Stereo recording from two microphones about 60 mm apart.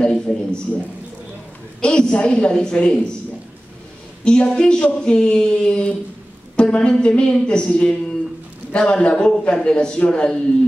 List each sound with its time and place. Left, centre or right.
0.0 s a sound: centre
1.8 s speech: centre
4.2 s a woman's voice: centre